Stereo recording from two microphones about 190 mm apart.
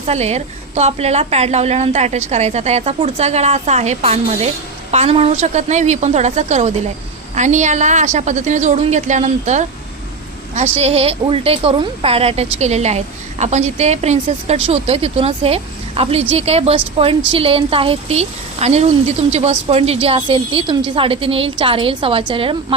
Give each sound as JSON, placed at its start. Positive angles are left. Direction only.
{"t": 0.1, "sound": "a woman's voice", "side_deg": -35}
{"t": 10.8, "sound": "a woman's voice", "side_deg": -30}